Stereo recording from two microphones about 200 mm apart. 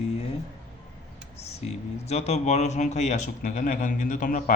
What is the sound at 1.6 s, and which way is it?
Speech, 30° left (ahead or behind).